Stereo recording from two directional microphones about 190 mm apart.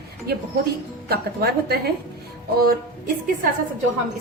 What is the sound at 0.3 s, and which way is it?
A woman's voice, 55° right (ahead or behind).